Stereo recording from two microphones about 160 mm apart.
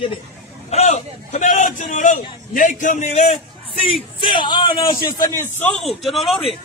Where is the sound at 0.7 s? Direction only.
40° left (ahead or behind).